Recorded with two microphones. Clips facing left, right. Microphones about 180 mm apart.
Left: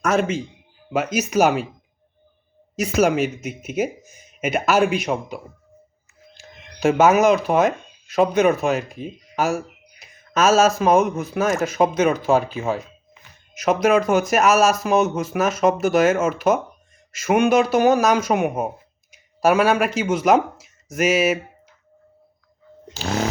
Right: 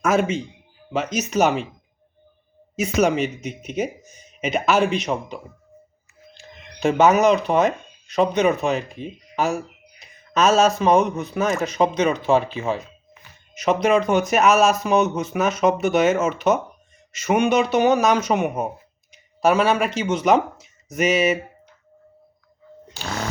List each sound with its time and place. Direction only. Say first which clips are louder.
0.0 s a man's voice: even; centre (ahead or behind)
2.7 s speech: left 1 dB; 5° left (ahead or behind)
6.7 s a man's voice: left 1 dB; 5° left (ahead or behind)
23.0 s a sound: left 5 dB; 40° left (ahead or behind)